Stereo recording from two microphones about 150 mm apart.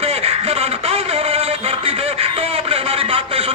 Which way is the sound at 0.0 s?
40° right (ahead or behind).